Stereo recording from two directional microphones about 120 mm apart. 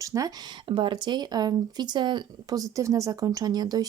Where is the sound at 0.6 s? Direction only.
40° right (ahead or behind).